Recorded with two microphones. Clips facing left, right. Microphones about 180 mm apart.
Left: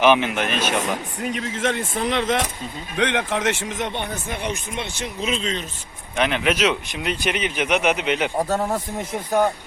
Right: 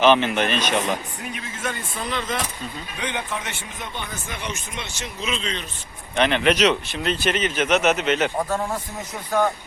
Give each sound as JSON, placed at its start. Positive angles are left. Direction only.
{"t": 0.0, "sound": "speech", "side_deg": 10}
{"t": 1.3, "sound": "speech", "side_deg": 90}
{"t": 6.1, "sound": "speech", "side_deg": 5}
{"t": 8.4, "sound": "speech", "side_deg": 35}